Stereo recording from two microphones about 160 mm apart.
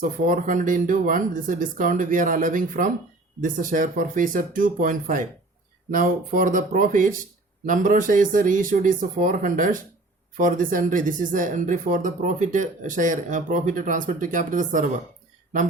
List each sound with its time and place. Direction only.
0.0 s speech: 55° right (ahead or behind)